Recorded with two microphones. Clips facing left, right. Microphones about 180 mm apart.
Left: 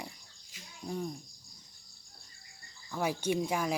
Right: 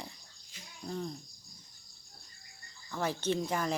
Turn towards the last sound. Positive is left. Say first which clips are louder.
# left 1 dB
turn(degrees=10)  # may be behind; listen again after turning